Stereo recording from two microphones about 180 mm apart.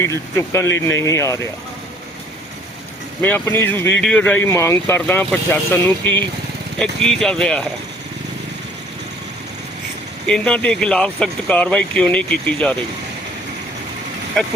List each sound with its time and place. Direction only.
0.0 s speech: 15° left (ahead or behind)
3.2 s speech: 10° left (ahead or behind)
10.2 s speech: 5° left (ahead or behind)